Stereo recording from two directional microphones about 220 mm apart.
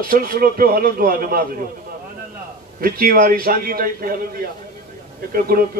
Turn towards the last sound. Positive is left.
turn(degrees=-40)  # may be behind; listen again after turning